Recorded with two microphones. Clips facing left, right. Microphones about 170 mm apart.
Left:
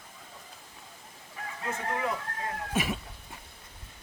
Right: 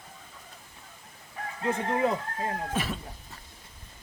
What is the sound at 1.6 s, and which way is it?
Speech, 25° right (ahead or behind).